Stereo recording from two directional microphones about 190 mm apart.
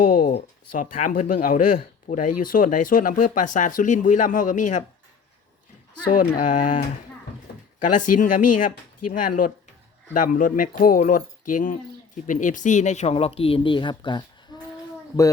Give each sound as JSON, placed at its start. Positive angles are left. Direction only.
{"t": 0.1, "sound": "speech", "side_deg": 45}
{"t": 6.1, "sound": "speech", "side_deg": 45}
{"t": 7.9, "sound": "speech", "side_deg": 45}